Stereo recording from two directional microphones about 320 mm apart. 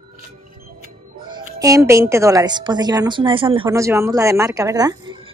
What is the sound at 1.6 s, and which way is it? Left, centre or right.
A woman's voice, centre.